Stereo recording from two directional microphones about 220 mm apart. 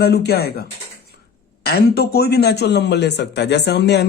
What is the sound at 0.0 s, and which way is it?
Speech, 45° left (ahead or behind).